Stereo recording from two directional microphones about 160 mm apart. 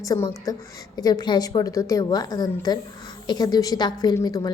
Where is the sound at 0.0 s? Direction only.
20° left (ahead or behind).